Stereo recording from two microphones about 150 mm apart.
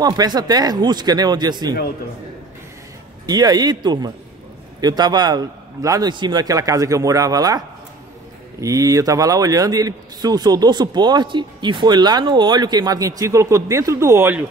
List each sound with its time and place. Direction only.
0.0 s a man's voice: 25° right (ahead or behind)
3.3 s a man's voice: 25° right (ahead or behind)